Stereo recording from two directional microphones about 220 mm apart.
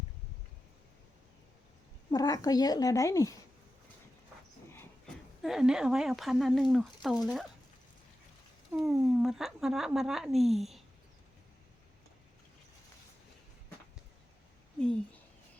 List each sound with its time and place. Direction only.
2.0 s speech: 15° left (ahead or behind)
5.4 s speech: centre (ahead or behind)
8.7 s speech: centre (ahead or behind)